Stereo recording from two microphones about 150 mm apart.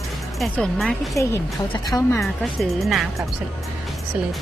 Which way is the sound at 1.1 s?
20° left (ahead or behind).